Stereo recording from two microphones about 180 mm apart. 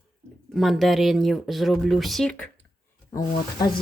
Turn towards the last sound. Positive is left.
turn(degrees=20)  # may be behind; listen again after turning